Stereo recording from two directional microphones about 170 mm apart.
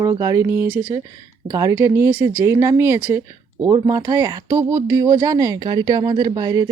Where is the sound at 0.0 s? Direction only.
20° right (ahead or behind).